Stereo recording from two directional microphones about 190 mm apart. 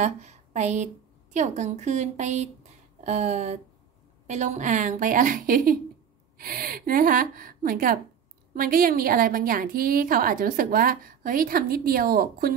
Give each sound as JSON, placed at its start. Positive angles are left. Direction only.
{"t": 0.0, "sound": "a woman's voice", "side_deg": -35}